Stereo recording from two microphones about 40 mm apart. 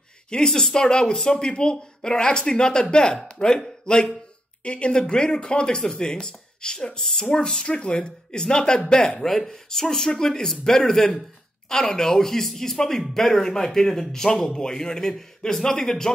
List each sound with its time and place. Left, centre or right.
0.3 s speech: centre
7.0 s speech: centre
7.6 s speech: left